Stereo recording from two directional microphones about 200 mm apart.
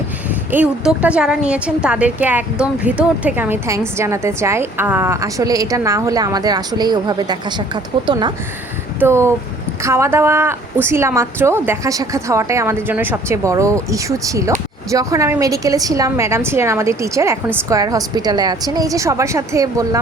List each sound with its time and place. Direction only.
0.5 s a woman's voice: 5° right (ahead or behind)